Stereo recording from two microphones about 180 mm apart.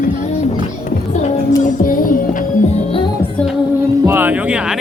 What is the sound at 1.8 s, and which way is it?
Music, 50° left (ahead or behind).